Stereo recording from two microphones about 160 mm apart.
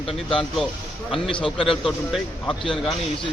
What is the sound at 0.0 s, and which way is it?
Speech, 35° left (ahead or behind).